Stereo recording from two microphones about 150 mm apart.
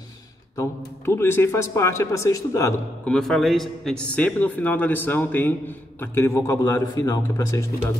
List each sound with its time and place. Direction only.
0.6 s a man's voice: 15° left (ahead or behind)
3.1 s a man's voice: 5° left (ahead or behind); by 7.6 s 25° left (ahead or behind)